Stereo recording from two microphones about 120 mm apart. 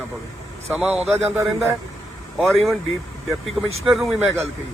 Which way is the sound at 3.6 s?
Centre (ahead or behind).